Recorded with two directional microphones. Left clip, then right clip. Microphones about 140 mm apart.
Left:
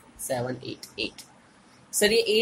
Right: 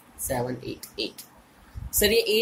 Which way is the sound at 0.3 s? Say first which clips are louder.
Right 1 dB; 5° left (ahead or behind).